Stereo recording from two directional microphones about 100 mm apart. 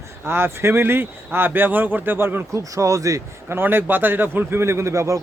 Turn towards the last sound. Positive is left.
turn(degrees=-30)  # may be behind; listen again after turning